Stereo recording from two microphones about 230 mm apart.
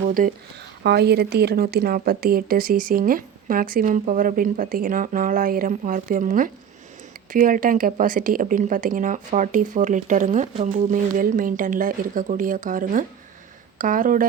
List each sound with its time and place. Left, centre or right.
0.2 s a woman's voice: right